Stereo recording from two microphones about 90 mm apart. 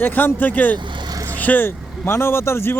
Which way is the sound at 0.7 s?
60° right (ahead or behind).